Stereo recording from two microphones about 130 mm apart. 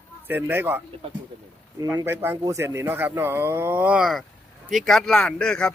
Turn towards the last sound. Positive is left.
turn(degrees=5)  # may be behind; listen again after turning